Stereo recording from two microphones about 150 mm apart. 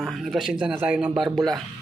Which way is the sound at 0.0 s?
Centre (ahead or behind).